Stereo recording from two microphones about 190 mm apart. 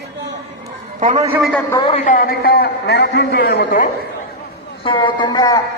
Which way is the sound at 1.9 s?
45° left (ahead or behind).